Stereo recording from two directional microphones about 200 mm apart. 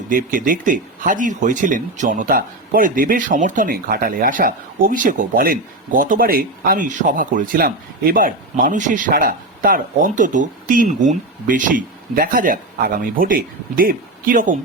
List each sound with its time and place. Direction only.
0.1 s speech: 45° right (ahead or behind)